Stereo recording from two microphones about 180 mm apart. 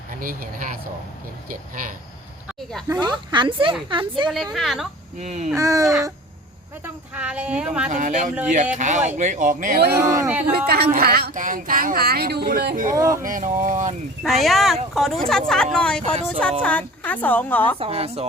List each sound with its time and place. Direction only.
0.2 s speech: 50° right (ahead or behind)
2.9 s a woman's voice: 25° right (ahead or behind)
4.5 s speech: centre (ahead or behind)
5.2 s speech: 40° right (ahead or behind)
5.5 s a woman's voice: 15° right (ahead or behind)
6.8 s a woman's voice: 5° right (ahead or behind)
7.9 s speech: 45° right (ahead or behind)
9.9 s a woman's voice: 15° right (ahead or behind)
10.9 s speech: 55° right (ahead or behind)
12.9 s a woman's voice: 15° right (ahead or behind)
13.2 s speech: 45° right (ahead or behind)
14.3 s speech: centre (ahead or behind)
17.7 s speech: 30° right (ahead or behind)